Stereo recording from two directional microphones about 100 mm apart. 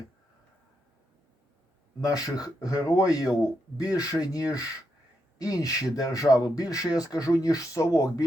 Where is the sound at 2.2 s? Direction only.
40° left (ahead or behind).